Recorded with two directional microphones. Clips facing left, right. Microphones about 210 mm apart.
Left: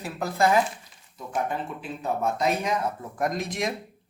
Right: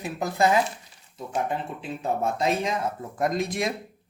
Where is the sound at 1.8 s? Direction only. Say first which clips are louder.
Right 1 dB; 25° right (ahead or behind).